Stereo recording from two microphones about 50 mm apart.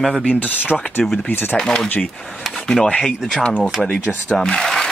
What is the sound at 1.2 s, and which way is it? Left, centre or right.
Speech, left.